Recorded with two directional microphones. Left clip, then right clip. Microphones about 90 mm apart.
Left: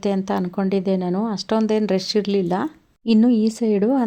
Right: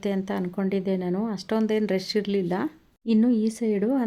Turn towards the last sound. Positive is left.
turn(degrees=35)  # may be behind; listen again after turning